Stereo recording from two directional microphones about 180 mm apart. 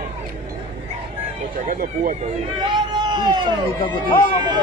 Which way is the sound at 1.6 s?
50° right (ahead or behind).